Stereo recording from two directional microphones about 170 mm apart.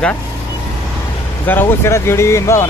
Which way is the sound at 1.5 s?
15° left (ahead or behind).